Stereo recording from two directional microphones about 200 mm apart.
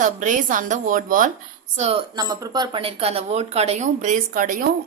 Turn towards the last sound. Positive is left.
turn(degrees=-45)  # may be behind; listen again after turning